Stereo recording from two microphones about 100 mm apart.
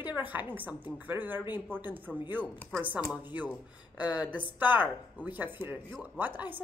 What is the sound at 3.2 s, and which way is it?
A woman's voice, 15° right (ahead or behind).